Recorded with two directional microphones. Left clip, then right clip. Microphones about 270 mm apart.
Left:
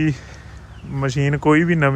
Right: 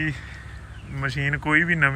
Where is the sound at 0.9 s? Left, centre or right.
Left.